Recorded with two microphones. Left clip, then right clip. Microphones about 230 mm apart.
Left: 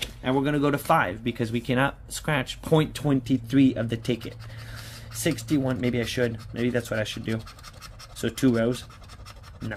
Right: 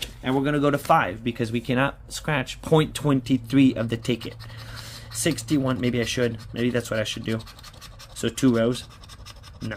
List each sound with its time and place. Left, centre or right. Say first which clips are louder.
0.0 s speech: right 1 dB; centre